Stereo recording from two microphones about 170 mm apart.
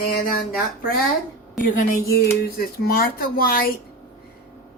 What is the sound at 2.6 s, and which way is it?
Speech, 60° left (ahead or behind).